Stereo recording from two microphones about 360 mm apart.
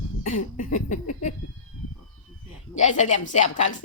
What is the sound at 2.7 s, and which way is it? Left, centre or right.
Speech, centre.